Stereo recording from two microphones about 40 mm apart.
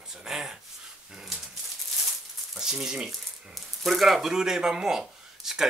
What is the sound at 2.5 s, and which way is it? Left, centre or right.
Speech, centre.